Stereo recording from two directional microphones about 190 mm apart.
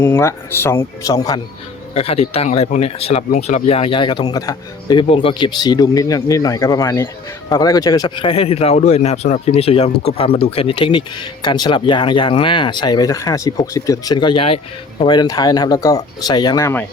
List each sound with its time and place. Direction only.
0.0 s speech: 15° left (ahead or behind)
2.0 s speech: 30° left (ahead or behind)